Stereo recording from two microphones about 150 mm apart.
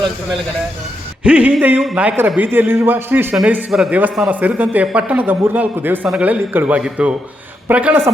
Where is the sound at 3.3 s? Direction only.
5° right (ahead or behind).